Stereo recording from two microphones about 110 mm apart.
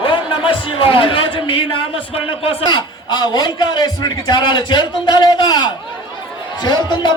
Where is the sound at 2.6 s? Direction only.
40° left (ahead or behind).